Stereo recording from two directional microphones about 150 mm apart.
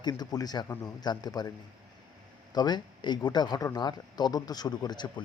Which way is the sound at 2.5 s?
30° left (ahead or behind).